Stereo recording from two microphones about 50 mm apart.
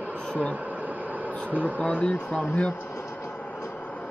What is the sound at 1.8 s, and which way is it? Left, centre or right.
Speech, left.